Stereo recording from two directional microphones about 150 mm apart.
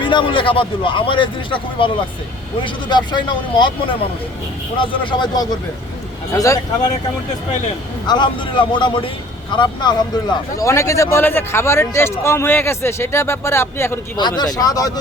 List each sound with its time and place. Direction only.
0.0 s speech: 35° left (ahead or behind)
8.0 s speech: 30° left (ahead or behind)
14.2 s speech: 30° left (ahead or behind)